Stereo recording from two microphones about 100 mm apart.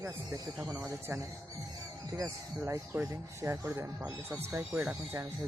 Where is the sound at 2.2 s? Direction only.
25° right (ahead or behind).